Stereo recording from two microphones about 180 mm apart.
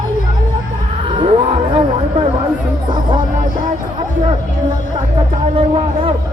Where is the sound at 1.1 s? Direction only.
30° right (ahead or behind).